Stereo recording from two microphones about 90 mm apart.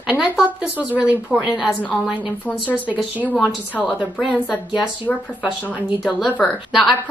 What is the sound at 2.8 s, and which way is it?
Speech, 15° right (ahead or behind).